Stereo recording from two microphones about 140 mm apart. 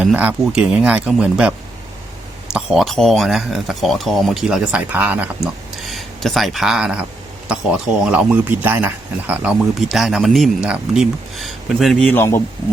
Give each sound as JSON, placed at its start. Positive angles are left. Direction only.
{"t": 0.0, "sound": "speech", "side_deg": -10}
{"t": 5.8, "sound": "speech", "side_deg": 0}
{"t": 12.1, "sound": "speech", "side_deg": 20}